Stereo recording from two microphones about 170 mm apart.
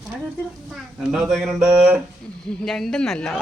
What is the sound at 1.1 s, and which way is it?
Speech, centre (ahead or behind).